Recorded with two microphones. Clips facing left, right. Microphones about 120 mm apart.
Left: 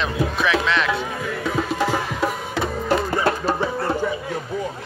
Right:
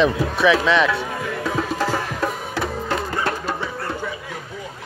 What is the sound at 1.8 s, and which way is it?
Music, 15° left (ahead or behind).